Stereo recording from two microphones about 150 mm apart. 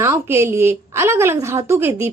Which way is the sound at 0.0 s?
15° right (ahead or behind).